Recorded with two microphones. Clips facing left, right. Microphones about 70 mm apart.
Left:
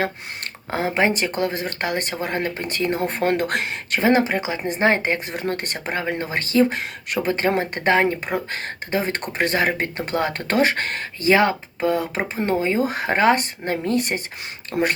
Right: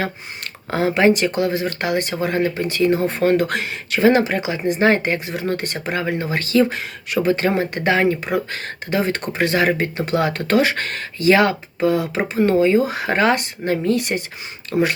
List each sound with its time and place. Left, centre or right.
0.7 s speech: left
4.0 s speech: left